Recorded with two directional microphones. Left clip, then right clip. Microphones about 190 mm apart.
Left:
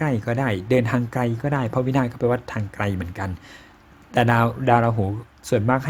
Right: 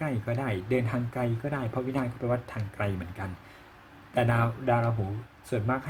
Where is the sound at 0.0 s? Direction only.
45° left (ahead or behind).